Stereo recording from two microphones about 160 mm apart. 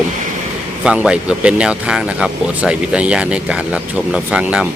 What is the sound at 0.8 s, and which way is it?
Speech, 5° right (ahead or behind).